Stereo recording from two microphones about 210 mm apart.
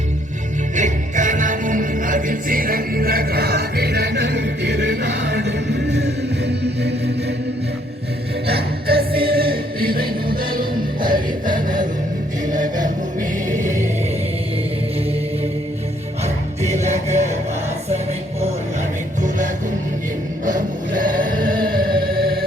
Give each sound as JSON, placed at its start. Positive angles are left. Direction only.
{"t": 0.8, "sound": "music", "side_deg": -35}
{"t": 8.4, "sound": "music", "side_deg": -50}
{"t": 12.5, "sound": "chant", "side_deg": -40}
{"t": 16.2, "sound": "music", "side_deg": -30}
{"t": 20.4, "sound": "chant", "side_deg": -40}